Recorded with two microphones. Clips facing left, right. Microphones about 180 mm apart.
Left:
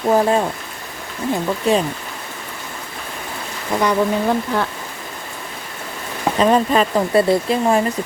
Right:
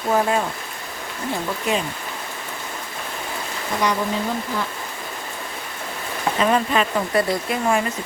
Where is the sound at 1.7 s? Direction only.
30° left (ahead or behind).